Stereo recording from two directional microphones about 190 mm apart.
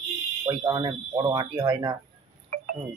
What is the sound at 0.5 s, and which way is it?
Speech, 20° right (ahead or behind).